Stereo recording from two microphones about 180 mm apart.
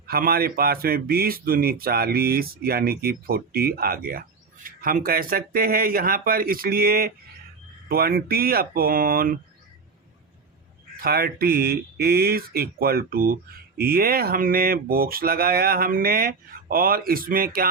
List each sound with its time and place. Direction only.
0.1 s speech: 55° right (ahead or behind)
11.0 s speech: 55° right (ahead or behind)